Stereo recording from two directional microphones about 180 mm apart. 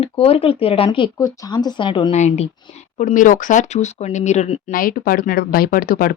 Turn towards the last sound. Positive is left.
turn(degrees=55)  # may be behind; listen again after turning